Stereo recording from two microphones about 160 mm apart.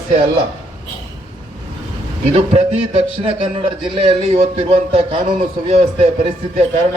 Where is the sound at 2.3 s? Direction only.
40° right (ahead or behind).